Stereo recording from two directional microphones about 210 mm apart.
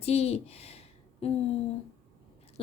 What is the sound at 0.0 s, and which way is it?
A woman's voice, 30° left (ahead or behind).